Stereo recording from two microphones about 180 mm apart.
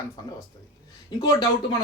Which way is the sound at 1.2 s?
20° left (ahead or behind).